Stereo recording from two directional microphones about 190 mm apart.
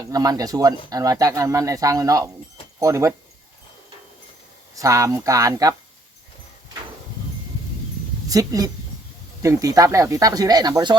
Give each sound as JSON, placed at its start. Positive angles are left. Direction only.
{"t": 0.0, "sound": "speech", "side_deg": -20}
{"t": 4.7, "sound": "speech", "side_deg": -15}
{"t": 8.3, "sound": "speech", "side_deg": -20}